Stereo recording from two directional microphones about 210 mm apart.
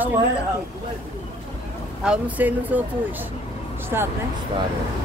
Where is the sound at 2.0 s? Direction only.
5° right (ahead or behind).